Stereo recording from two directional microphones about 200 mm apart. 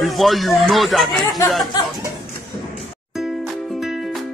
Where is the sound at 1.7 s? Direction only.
20° left (ahead or behind).